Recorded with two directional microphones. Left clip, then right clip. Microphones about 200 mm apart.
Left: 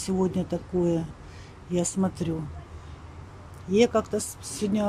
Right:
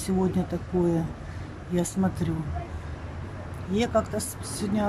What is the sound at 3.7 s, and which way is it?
Speech, 10° left (ahead or behind).